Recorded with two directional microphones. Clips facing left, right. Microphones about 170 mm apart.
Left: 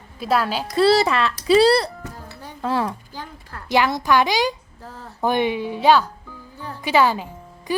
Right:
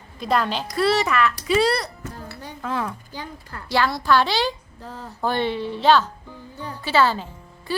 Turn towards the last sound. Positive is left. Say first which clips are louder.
# left 3 dB
turn(degrees=15)  # may be behind; listen again after turning